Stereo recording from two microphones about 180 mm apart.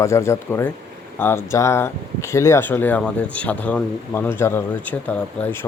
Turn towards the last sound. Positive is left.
turn(degrees=10)  # may be behind; listen again after turning